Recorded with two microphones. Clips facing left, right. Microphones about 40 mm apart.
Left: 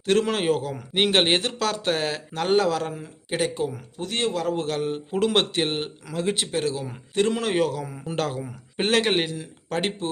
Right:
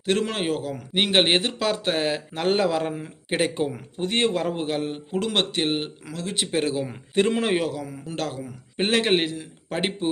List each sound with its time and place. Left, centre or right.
0.0 s a man's voice: centre; by 4.5 s right
4.5 s speech: centre
5.1 s a man's voice: centre
6.5 s a man's voice: right
7.5 s speech: centre
7.9 s a man's voice: centre
8.8 s speech: centre